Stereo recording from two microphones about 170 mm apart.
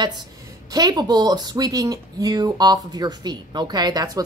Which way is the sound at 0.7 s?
20° right (ahead or behind).